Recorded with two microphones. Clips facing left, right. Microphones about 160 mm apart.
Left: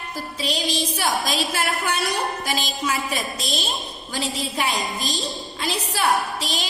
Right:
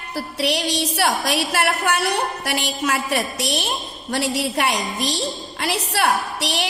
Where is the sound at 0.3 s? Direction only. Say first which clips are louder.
Right 4 dB; 70° right (ahead or behind).